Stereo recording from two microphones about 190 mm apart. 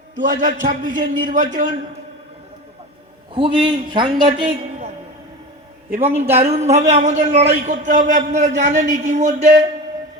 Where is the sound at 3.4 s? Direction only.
30° right (ahead or behind).